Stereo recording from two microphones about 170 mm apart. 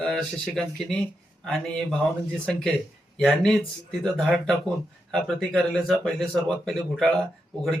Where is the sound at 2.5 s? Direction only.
5° left (ahead or behind).